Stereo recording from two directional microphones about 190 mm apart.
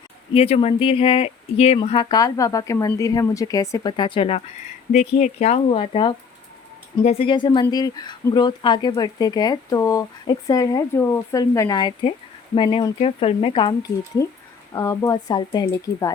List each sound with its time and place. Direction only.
0.3 s speech: 30° left (ahead or behind)
14.2 s speech: 15° left (ahead or behind)